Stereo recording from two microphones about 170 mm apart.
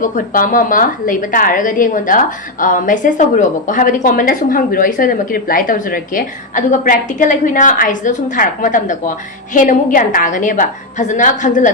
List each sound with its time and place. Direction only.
0.0 s a woman's voice: 50° left (ahead or behind)